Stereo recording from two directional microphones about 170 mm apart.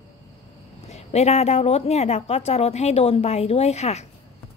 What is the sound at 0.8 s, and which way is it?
Speech, 40° left (ahead or behind).